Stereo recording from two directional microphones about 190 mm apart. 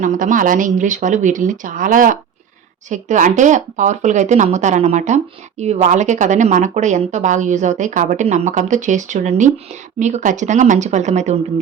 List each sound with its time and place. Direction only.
0.0 s speech: 45° right (ahead or behind)